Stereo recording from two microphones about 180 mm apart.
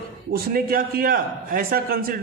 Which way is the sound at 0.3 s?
55° right (ahead or behind).